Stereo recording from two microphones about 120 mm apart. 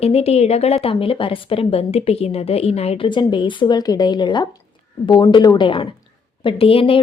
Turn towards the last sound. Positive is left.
turn(degrees=50)  # may be behind; listen again after turning